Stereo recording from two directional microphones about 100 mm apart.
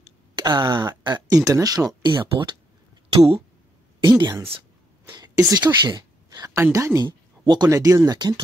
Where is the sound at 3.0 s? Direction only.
70° right (ahead or behind).